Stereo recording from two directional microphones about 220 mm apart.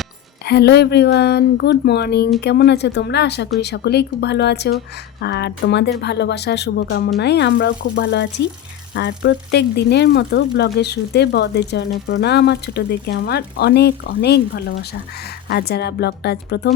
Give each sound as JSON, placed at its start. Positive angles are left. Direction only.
{"t": 0.4, "sound": "speech", "side_deg": 50}